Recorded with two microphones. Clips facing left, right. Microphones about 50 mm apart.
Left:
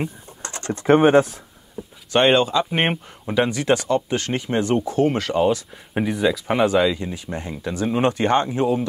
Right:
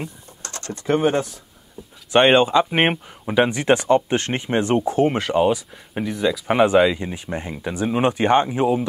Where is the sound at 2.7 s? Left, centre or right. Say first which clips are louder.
Right 2 dB; centre.